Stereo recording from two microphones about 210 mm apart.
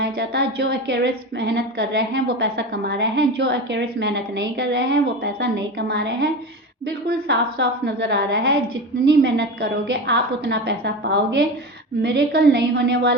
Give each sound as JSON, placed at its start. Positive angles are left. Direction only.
{"t": 0.0, "sound": "a woman's voice", "side_deg": -50}